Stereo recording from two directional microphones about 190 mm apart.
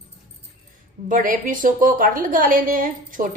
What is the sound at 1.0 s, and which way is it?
A woman's voice, 45° right (ahead or behind).